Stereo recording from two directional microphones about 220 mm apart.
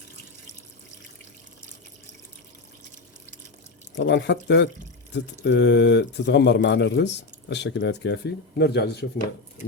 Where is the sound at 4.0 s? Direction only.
50° left (ahead or behind).